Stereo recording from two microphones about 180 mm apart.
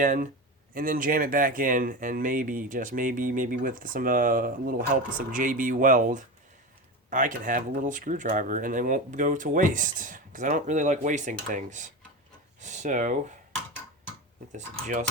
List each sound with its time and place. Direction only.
0.0 s speech: 45° right (ahead or behind)
14.5 s speech: 40° right (ahead or behind)